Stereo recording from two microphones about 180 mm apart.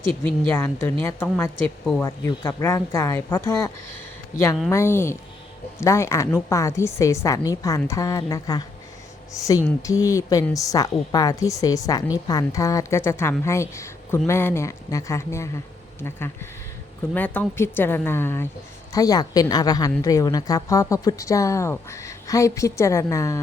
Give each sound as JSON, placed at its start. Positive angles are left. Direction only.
{"t": 0.2, "sound": "speech", "side_deg": 10}
{"t": 4.7, "sound": "speech", "side_deg": 15}